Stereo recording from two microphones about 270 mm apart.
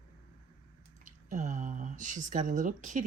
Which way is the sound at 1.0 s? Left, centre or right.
Right.